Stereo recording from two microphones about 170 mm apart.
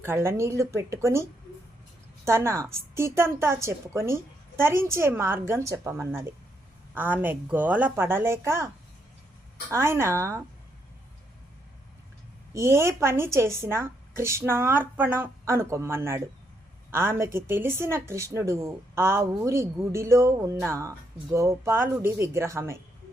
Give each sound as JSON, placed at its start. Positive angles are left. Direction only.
{"t": 0.0, "sound": "a woman's voice", "side_deg": -15}
{"t": 2.2, "sound": "a woman's voice", "side_deg": -15}
{"t": 12.5, "sound": "a woman's voice", "side_deg": -15}